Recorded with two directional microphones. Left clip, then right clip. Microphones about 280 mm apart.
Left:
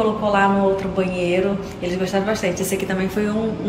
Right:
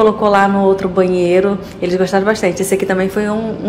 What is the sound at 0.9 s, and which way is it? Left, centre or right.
A woman's voice, centre.